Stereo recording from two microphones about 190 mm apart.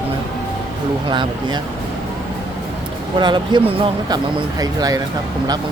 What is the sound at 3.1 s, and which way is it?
Speech, 25° right (ahead or behind).